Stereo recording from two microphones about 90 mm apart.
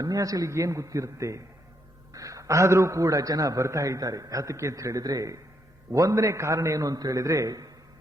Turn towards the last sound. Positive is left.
turn(degrees=-40)  # may be behind; listen again after turning